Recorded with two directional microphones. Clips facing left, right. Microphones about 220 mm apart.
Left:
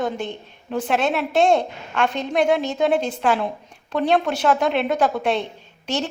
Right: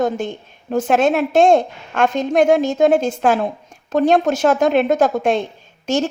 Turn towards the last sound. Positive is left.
turn(degrees=-45)  # may be behind; listen again after turning